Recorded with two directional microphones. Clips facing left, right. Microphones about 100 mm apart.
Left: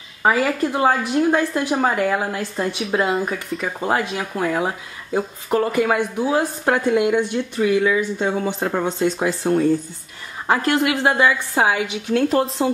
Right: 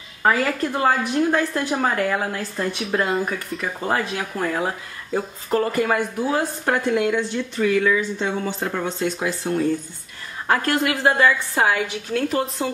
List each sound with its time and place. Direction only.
0.2 s speech: 10° left (ahead or behind)
2.8 s speech: centre (ahead or behind)
3.3 s speech: 15° left (ahead or behind); by 9.7 s 35° left (ahead or behind)
10.4 s speech: 15° left (ahead or behind)